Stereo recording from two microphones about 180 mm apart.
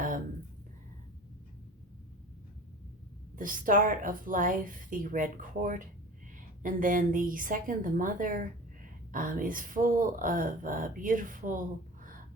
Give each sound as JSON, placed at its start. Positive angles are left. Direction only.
{"t": 3.3, "sound": "a woman's voice", "side_deg": -50}